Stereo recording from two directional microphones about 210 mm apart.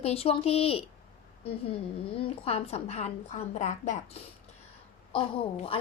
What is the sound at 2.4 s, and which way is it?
A woman's voice, 30° left (ahead or behind).